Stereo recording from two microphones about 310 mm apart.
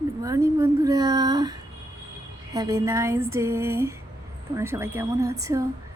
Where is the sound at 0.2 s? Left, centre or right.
Centre.